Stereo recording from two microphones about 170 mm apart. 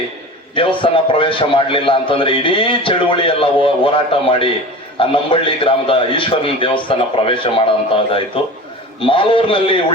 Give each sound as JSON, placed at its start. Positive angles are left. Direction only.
{"t": 0.5, "sound": "a man's voice", "side_deg": 30}
{"t": 9.0, "sound": "a man's voice", "side_deg": 30}